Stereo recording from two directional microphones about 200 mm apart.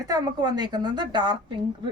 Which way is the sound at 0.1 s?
20° right (ahead or behind).